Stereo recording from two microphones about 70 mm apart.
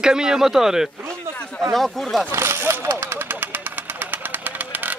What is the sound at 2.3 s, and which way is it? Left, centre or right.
Speech, right.